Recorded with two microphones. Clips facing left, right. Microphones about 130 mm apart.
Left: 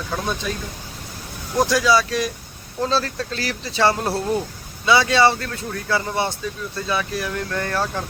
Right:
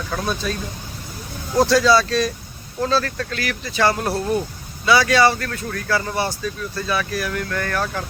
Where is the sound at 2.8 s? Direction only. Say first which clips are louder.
Right 1 dB; 25° left (ahead or behind).